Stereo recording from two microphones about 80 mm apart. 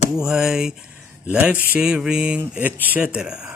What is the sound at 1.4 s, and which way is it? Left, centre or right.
Speech, centre.